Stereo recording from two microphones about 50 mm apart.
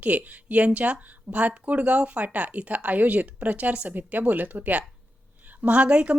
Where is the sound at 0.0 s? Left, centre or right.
Right.